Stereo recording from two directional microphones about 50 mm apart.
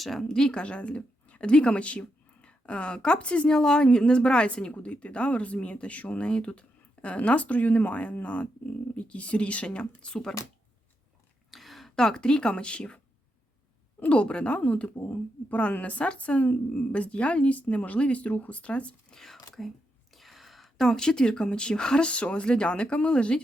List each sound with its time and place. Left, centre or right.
0.0 s speech: centre
0.3 s speech: centre
11.5 s speech: centre; by 13.0 s left
14.0 s speech: left
19.1 s whispering: centre
20.1 s speech: centre